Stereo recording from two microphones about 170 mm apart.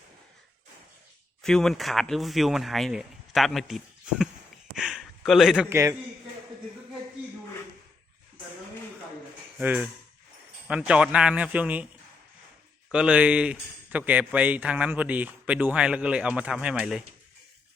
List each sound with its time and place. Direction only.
1.4 s speech: 5° left (ahead or behind)
4.7 s a sound: centre (ahead or behind)
5.6 s speech: 15° right (ahead or behind)
9.6 s speech: 10° right (ahead or behind)
12.9 s speech: 5° right (ahead or behind)